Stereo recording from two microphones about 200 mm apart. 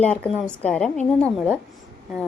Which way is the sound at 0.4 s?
5° left (ahead or behind).